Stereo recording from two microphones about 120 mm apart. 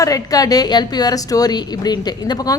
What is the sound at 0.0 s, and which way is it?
A woman's voice, 30° left (ahead or behind).